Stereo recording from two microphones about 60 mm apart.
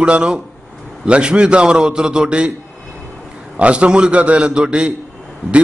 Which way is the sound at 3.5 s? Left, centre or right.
Centre.